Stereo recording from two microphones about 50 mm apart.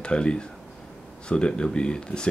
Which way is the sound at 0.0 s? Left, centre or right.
Centre.